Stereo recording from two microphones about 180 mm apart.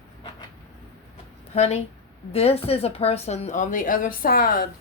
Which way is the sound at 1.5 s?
35° left (ahead or behind).